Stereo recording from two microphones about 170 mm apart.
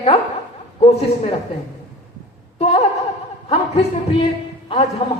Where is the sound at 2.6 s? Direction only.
40° left (ahead or behind).